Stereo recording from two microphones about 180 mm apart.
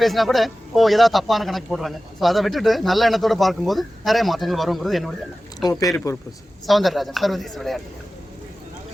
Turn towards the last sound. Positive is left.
turn(degrees=0)  # may be behind; listen again after turning